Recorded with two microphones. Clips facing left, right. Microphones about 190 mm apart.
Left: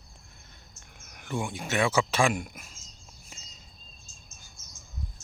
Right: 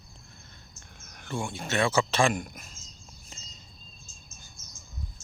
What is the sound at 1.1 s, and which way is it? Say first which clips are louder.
Speech: left 1 dB; 15° left (ahead or behind).